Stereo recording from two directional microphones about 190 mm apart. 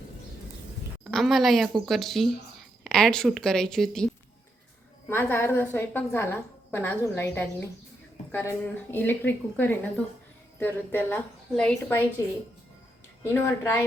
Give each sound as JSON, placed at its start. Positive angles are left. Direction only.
{"t": 1.1, "sound": "a woman's voice", "side_deg": 0}
{"t": 13.3, "sound": "a woman's voice", "side_deg": 15}